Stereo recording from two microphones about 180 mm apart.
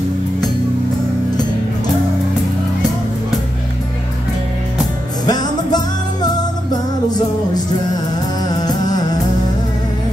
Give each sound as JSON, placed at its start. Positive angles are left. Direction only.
{"t": 5.2, "sound": "music", "side_deg": 20}